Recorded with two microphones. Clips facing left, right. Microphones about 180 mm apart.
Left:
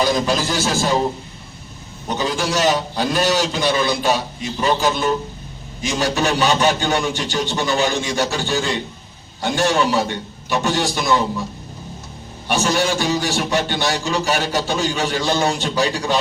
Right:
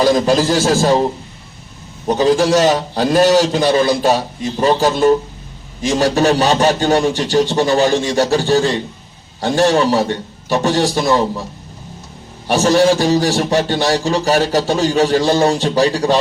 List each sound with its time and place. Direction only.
0.0 s a man's voice: 35° right (ahead or behind)
2.0 s a man's voice: 35° right (ahead or behind)
12.5 s a man's voice: 35° right (ahead or behind)